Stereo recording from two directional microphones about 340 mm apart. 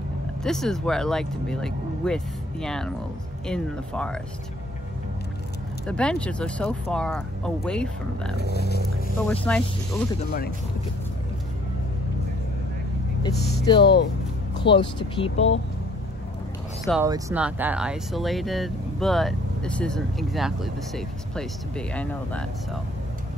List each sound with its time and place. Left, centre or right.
0.4 s speech: centre
5.9 s speech: centre
8.5 s speech: left
9.3 s speech: centre
13.2 s speech: centre
13.7 s speech: left
14.7 s speech: centre
15.3 s speech: left
16.8 s speech: centre